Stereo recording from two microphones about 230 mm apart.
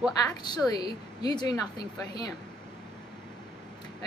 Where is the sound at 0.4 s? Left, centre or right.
Centre.